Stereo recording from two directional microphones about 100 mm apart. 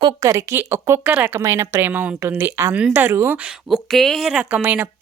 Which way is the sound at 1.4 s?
30° right (ahead or behind).